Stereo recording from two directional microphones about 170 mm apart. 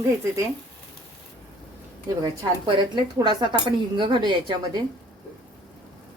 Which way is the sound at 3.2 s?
25° right (ahead or behind).